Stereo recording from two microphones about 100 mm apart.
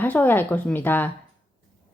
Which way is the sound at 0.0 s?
20° left (ahead or behind).